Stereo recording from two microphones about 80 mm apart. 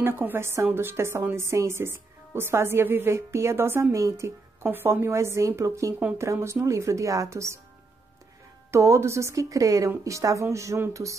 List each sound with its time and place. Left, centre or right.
0.0 s a woman's voice: right
4.6 s a woman's voice: right
8.7 s a woman's voice: right